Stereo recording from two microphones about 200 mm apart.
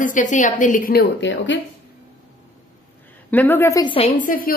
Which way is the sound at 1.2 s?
65° left (ahead or behind).